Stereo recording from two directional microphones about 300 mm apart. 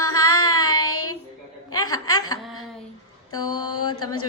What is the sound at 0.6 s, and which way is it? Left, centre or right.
Speech, left.